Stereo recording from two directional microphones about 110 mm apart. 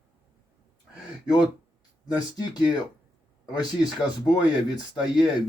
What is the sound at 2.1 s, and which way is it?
Speech, 40° left (ahead or behind).